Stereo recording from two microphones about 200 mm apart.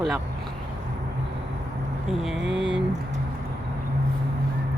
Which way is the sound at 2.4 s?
65° right (ahead or behind).